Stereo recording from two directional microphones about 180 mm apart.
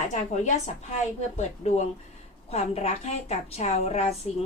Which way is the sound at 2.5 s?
35° left (ahead or behind).